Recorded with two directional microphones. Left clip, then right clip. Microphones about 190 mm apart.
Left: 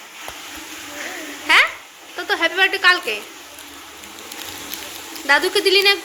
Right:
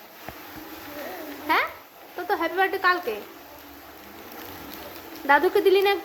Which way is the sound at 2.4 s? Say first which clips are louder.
Left 8 dB; 5° right (ahead or behind).